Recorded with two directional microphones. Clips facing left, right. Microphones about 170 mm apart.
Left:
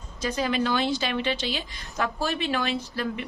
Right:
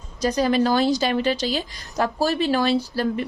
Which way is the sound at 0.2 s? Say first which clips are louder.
Right 6 dB; 40° right (ahead or behind).